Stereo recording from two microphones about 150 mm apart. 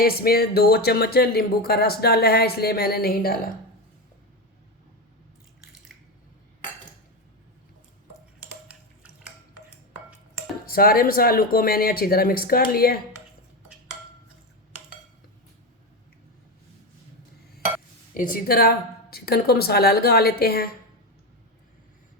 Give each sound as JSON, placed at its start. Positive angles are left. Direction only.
{"t": 0.0, "sound": "speech", "side_deg": 90}
{"t": 10.7, "sound": "speech", "side_deg": 80}
{"t": 18.1, "sound": "speech", "side_deg": 65}